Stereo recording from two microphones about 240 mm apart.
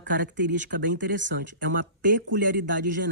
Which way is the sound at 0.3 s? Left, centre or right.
Right.